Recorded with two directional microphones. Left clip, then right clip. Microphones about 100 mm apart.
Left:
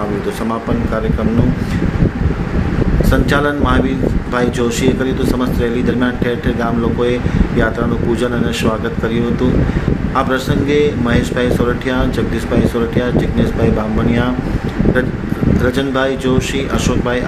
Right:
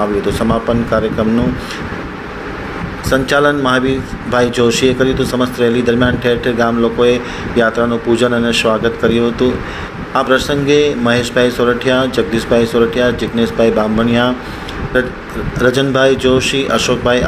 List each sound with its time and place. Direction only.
3.1 s a man's voice: 20° right (ahead or behind)
15.6 s a man's voice: 30° right (ahead or behind)